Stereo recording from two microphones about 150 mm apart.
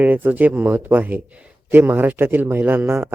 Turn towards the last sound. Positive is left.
turn(degrees=-15)  # may be behind; listen again after turning